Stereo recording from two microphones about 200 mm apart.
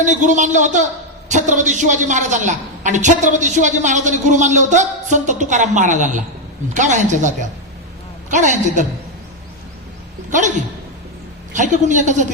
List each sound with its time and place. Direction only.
0.0 s a woman's voice: 40° right (ahead or behind)
10.2 s speech: 40° right (ahead or behind)
11.5 s a woman's voice: 40° right (ahead or behind)